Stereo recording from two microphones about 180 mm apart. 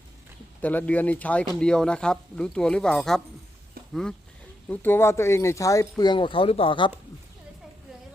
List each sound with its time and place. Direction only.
0.6 s speech: 10° left (ahead or behind)
4.7 s speech: 10° left (ahead or behind); by 6.9 s 30° left (ahead or behind)